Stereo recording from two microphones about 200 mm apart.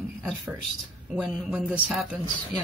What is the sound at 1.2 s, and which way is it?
Speech, 5° right (ahead or behind).